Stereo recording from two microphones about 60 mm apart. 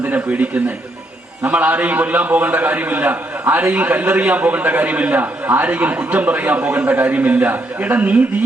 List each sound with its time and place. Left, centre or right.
0.0 s a man's voice: right